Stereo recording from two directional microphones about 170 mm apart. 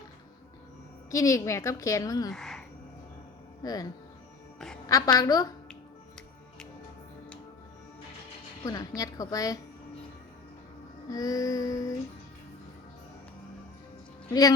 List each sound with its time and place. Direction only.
1.1 s a woman's voice: 20° left (ahead or behind)
2.3 s a sound: centre (ahead or behind)
3.6 s a woman's voice: 20° left (ahead or behind)
8.6 s a woman's voice: 20° left (ahead or behind)
11.1 s a woman's voice: 20° left (ahead or behind)